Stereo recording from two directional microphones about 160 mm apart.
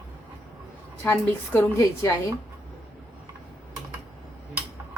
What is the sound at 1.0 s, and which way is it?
Speech, 15° left (ahead or behind).